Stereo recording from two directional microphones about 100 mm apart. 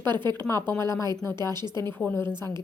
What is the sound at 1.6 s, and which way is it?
Speech, 45° right (ahead or behind).